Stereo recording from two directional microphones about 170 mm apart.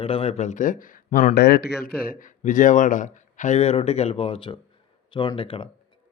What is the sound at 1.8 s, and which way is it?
Speech, 55° left (ahead or behind).